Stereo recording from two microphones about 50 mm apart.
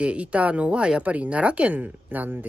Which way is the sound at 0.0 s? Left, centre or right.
Right.